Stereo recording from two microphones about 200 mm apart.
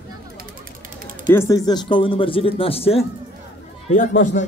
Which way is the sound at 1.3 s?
15° left (ahead or behind).